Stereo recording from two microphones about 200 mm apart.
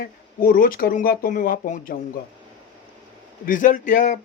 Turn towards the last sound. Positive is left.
turn(degrees=40)  # may be behind; listen again after turning